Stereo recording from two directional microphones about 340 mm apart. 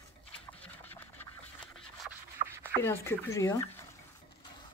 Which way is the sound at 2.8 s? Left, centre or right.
Centre.